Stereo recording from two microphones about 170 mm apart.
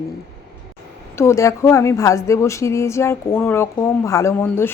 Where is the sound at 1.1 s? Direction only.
15° left (ahead or behind).